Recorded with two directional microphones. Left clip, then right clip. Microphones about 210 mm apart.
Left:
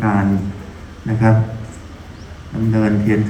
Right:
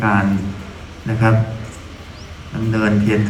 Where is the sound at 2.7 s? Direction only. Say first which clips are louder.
Even; 55° left (ahead or behind).